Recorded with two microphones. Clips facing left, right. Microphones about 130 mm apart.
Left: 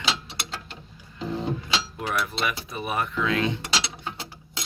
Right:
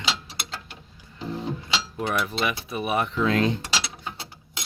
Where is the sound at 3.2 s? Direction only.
40° right (ahead or behind).